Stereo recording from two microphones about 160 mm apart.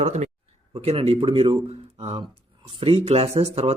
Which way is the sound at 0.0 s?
45° right (ahead or behind).